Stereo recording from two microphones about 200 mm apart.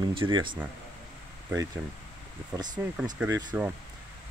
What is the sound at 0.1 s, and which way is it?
Speech, 25° right (ahead or behind).